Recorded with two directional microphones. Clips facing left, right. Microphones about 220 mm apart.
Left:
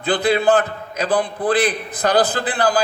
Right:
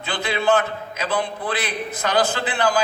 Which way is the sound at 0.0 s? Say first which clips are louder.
Left 6 dB; 35° left (ahead or behind).